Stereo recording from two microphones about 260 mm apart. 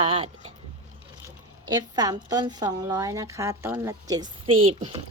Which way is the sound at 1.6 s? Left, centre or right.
Centre.